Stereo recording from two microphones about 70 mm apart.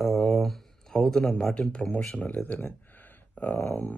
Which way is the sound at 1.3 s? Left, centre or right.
Centre.